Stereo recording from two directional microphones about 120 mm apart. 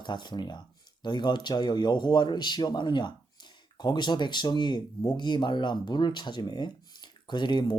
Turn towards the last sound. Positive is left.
turn(degrees=40)  # may be behind; listen again after turning